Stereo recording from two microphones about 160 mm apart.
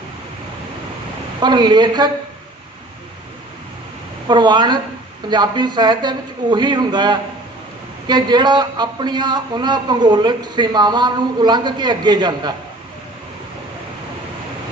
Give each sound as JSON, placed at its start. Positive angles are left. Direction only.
{"t": 1.4, "sound": "a man's voice", "side_deg": -25}
{"t": 4.3, "sound": "a man's voice", "side_deg": -25}